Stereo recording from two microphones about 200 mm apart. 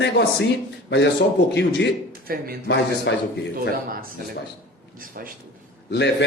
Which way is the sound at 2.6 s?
60° left (ahead or behind).